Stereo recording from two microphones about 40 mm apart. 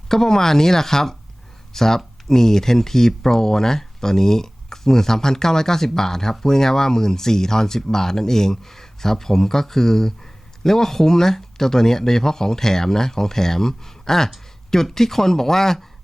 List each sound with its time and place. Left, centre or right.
0.1 s speech: centre